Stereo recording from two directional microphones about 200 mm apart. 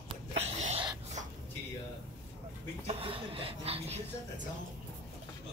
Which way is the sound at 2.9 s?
30° right (ahead or behind).